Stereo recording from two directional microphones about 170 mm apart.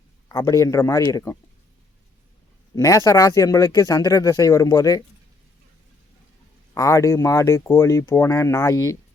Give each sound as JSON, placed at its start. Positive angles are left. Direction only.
{"t": 0.3, "sound": "speech", "side_deg": 20}
{"t": 2.7, "sound": "speech", "side_deg": 20}
{"t": 6.7, "sound": "speech", "side_deg": 20}